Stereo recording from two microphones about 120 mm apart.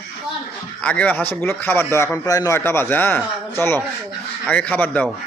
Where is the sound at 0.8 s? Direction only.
10° left (ahead or behind); by 2.6 s 30° left (ahead or behind).